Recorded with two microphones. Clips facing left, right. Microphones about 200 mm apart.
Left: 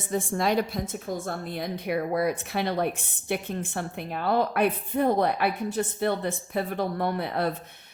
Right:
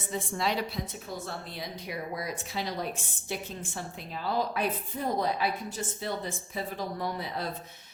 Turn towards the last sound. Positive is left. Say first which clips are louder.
# left 7 dB
turn(degrees=60)  # may be behind; listen again after turning